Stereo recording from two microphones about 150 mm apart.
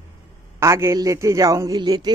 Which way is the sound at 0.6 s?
20° right (ahead or behind).